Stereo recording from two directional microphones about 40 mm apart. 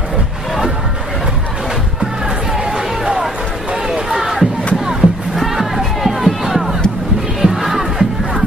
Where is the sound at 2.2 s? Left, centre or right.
Centre.